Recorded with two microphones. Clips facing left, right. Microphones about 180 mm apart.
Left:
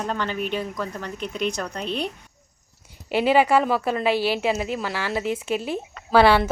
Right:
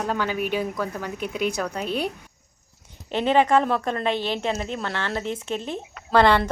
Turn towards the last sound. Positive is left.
turn(degrees=5)  # may be behind; listen again after turning